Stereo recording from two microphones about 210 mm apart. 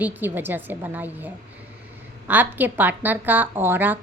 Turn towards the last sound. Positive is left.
turn(degrees=-10)  # may be behind; listen again after turning